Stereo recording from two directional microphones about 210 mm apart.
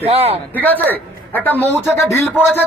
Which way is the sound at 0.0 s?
30° right (ahead or behind).